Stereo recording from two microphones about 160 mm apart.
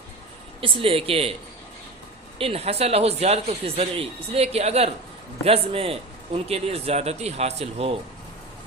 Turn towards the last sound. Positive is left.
turn(degrees=-40)  # may be behind; listen again after turning